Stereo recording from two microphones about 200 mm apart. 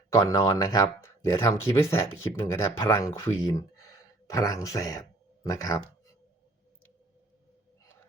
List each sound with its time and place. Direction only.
0.1 s speech: 15° left (ahead or behind)